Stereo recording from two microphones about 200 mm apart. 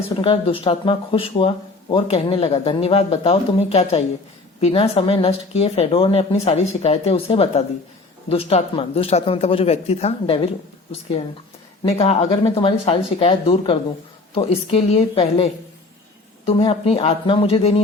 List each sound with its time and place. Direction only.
0.2 s speech: 25° left (ahead or behind)
11.8 s speech: 30° left (ahead or behind)
16.5 s speech: 25° left (ahead or behind)